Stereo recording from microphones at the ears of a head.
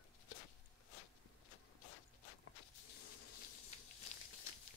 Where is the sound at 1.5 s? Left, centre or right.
Left.